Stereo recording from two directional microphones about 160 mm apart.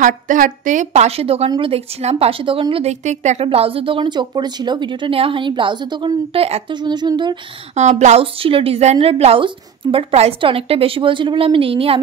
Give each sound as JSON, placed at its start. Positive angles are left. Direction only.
{"t": 0.0, "sound": "a woman's voice", "side_deg": -55}
{"t": 7.7, "sound": "a woman's voice", "side_deg": -45}